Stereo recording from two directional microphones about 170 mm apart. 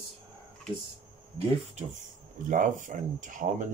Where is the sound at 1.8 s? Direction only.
45° right (ahead or behind).